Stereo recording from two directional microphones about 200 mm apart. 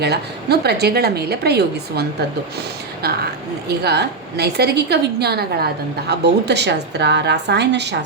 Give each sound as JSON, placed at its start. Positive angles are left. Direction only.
{"t": 0.0, "sound": "a woman's voice", "side_deg": -55}
{"t": 3.7, "sound": "a woman's voice", "side_deg": -55}